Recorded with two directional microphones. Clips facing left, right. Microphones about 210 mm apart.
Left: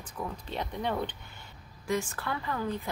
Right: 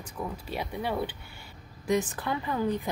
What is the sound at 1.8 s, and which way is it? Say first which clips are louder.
Speech: right 4 dB; 20° right (ahead or behind).